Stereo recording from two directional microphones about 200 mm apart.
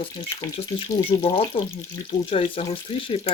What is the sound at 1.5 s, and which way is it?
Speech, 25° left (ahead or behind).